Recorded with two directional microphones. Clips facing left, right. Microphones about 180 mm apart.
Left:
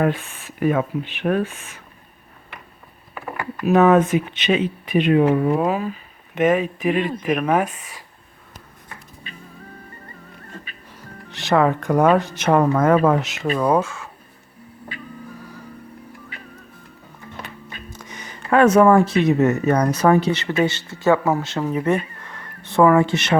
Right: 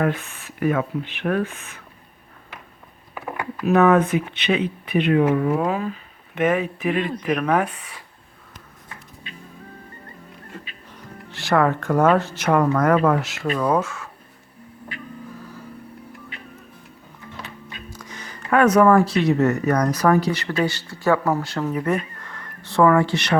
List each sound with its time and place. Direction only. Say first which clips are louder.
0.0 s speech: left 2 dB; 15° left (ahead or behind)
3.7 s speech: left 2 dB; 20° left (ahead or behind)
11.3 s speech: left 2 dB; 20° left (ahead or behind)
17.9 s speech: left 1 dB; 20° left (ahead or behind)